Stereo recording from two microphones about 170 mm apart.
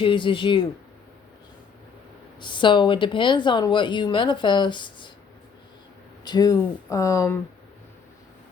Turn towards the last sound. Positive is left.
turn(degrees=20)  # may be behind; listen again after turning